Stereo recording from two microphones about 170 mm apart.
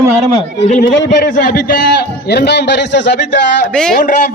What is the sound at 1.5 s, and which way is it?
A man's voice, 80° left.